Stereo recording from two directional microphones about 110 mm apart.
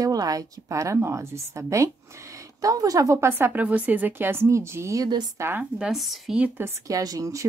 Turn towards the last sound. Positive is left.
turn(degrees=-30)  # may be behind; listen again after turning